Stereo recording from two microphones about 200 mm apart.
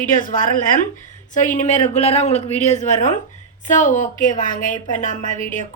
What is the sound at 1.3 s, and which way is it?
A woman's voice, 40° left (ahead or behind).